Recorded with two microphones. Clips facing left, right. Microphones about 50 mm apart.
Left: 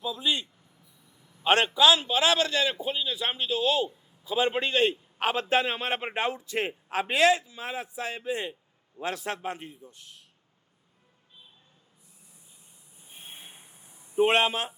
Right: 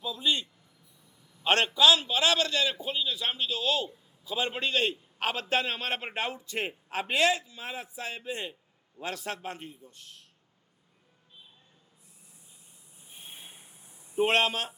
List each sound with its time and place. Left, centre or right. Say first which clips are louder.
0.0 s a man's voice: left 1 dB; centre; by 9.9 s left
13.1 s a sound: left 1 dB; left
14.3 s a man's voice: left 1 dB; centre